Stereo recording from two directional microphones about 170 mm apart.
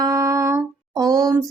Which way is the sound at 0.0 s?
20° right (ahead or behind).